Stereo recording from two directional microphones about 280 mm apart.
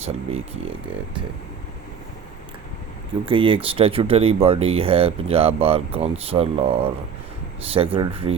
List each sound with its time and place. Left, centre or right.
0.0 s speech: right
3.2 s speech: centre